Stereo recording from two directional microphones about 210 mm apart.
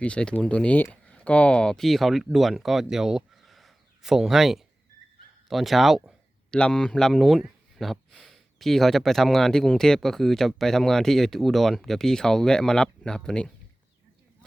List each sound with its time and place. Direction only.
0.0 s speech: 5° left (ahead or behind)